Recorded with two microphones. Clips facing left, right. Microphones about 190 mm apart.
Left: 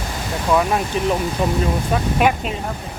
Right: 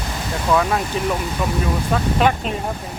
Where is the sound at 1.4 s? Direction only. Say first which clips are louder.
Left 3 dB; 30° left (ahead or behind).